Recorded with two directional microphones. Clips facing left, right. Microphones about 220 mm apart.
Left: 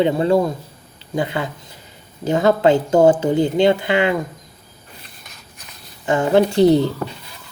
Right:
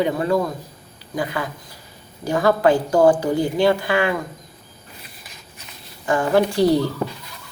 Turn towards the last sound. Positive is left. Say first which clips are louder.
# left 4 dB
turn(degrees=20)  # may be behind; listen again after turning